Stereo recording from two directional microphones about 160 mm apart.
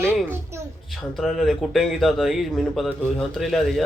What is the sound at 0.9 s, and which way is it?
Speech, centre (ahead or behind).